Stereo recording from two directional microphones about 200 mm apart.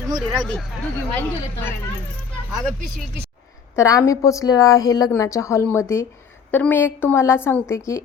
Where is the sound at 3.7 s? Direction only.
15° left (ahead or behind).